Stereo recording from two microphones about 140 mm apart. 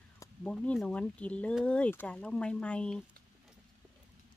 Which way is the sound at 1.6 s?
10° left (ahead or behind).